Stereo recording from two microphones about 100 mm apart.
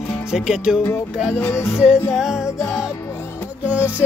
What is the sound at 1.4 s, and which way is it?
Music, 25° left (ahead or behind).